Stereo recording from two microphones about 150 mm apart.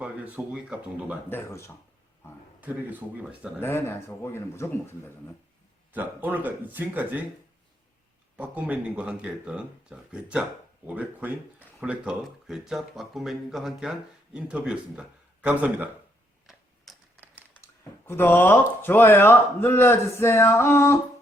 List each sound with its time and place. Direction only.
0.0 s speech: 5° right (ahead or behind)
1.3 s a man's voice: 15° left (ahead or behind)
2.6 s speech: 10° right (ahead or behind)
3.6 s a man's voice: 15° left (ahead or behind)
5.9 s speech: 10° right (ahead or behind)
8.4 s speech: 10° right (ahead or behind)
16.9 s a sound: centre (ahead or behind)
18.0 s a man's voice: 15° left (ahead or behind)